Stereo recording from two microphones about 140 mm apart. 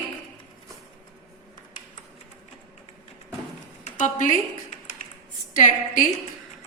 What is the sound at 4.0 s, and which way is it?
Speech, 60° left (ahead or behind).